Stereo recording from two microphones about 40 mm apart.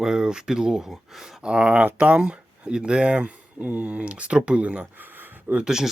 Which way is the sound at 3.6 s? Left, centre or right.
Right.